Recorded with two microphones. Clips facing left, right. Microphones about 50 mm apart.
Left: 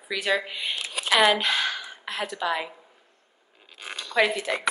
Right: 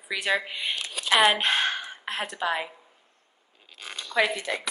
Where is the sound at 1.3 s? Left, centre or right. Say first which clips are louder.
Right 1 dB; right.